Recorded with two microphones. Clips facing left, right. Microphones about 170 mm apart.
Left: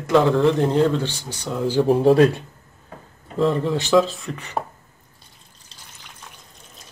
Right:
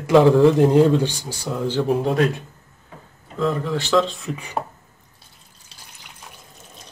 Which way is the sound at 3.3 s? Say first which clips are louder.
Left 2 dB; 25° left (ahead or behind).